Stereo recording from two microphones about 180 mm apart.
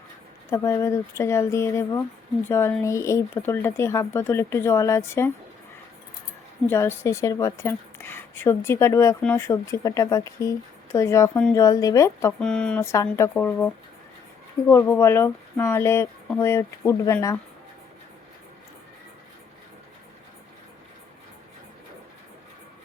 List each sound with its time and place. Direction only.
0.5 s a woman's voice: 15° left (ahead or behind)
6.7 s a woman's voice: 15° left (ahead or behind)
12.4 s a woman's voice: 5° left (ahead or behind)